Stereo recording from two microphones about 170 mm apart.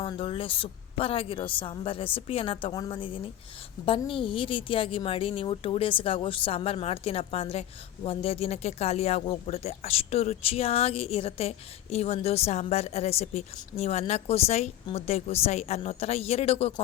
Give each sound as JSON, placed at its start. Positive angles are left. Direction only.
{"t": 0.0, "sound": "speech", "side_deg": 30}